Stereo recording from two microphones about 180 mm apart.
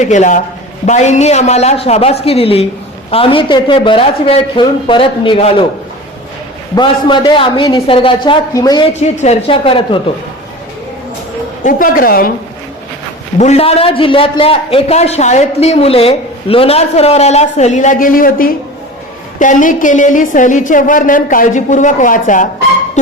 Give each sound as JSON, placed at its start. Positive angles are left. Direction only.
{"t": 0.0, "sound": "a woman's voice", "side_deg": 40}
{"t": 6.7, "sound": "a man's voice", "side_deg": 25}
{"t": 9.0, "sound": "a man's voice", "side_deg": 35}
{"t": 11.6, "sound": "a woman's voice", "side_deg": 50}
{"t": 13.4, "sound": "a man's voice", "side_deg": 35}